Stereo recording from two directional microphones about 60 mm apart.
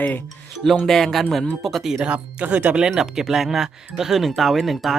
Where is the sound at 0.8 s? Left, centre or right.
Centre.